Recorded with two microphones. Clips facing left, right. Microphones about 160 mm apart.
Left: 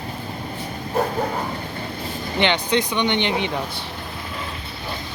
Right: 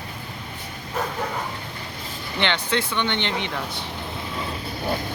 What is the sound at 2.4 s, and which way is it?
Speech, 15° left (ahead or behind).